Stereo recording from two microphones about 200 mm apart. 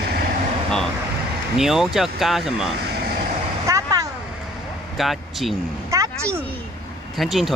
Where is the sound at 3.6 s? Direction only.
15° right (ahead or behind).